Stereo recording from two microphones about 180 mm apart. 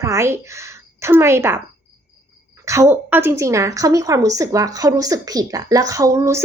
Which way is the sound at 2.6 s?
15° right (ahead or behind).